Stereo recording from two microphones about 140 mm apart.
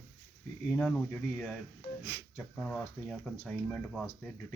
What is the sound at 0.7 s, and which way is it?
Speech, 5° left (ahead or behind).